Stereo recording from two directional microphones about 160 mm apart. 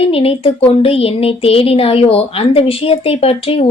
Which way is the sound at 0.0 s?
35° left (ahead or behind).